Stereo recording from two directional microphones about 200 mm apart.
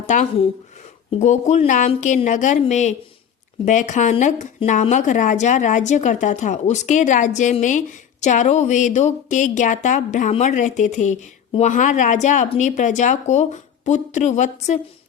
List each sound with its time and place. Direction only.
0.1 s speech: 35° left (ahead or behind)